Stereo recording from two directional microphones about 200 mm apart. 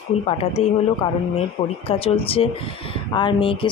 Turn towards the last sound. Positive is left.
turn(degrees=25)  # may be behind; listen again after turning